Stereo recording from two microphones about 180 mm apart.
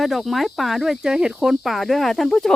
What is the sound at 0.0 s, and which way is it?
Speech, centre (ahead or behind).